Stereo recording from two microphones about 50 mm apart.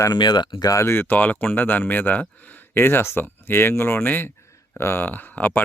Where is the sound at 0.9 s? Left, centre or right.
Left.